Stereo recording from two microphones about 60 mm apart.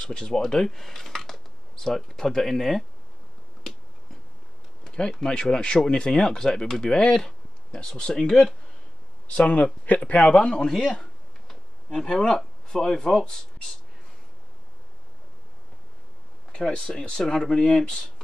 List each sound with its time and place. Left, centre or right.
0.0 s speech: centre
4.8 s speech: centre
9.3 s a man's voice: left
10.7 s a sound: centre
16.5 s speech: centre